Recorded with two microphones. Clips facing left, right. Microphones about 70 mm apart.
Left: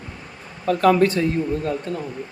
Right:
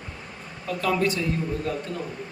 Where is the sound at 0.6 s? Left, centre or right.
Left.